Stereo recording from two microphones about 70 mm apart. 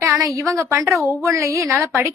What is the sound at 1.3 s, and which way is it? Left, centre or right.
Speech, right.